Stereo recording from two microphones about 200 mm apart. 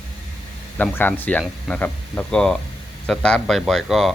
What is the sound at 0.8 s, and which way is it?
Speech, 10° left (ahead or behind).